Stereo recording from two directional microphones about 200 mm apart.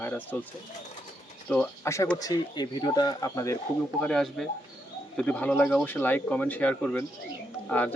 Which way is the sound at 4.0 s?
5° left (ahead or behind).